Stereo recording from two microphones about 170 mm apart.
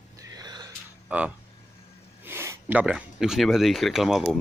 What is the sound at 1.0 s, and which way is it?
A man's voice, 5° right (ahead or behind).